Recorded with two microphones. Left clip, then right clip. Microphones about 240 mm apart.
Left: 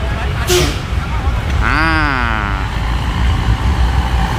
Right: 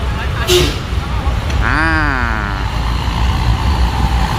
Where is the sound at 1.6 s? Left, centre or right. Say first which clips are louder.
Even; centre.